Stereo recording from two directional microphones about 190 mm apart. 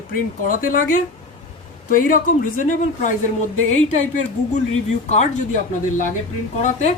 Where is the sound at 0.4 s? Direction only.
45° left (ahead or behind).